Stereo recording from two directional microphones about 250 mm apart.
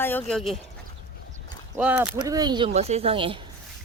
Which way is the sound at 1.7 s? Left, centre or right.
Centre.